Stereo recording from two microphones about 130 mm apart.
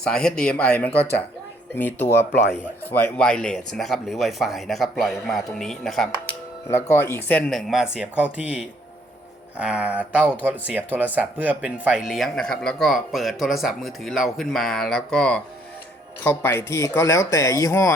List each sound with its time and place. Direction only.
0.0 s speech: 5° left (ahead or behind)
6.9 s speech: 15° left (ahead or behind)
7.9 s speech: 10° right (ahead or behind)
12.0 s speech: centre (ahead or behind)
16.2 s speech: 15° left (ahead or behind)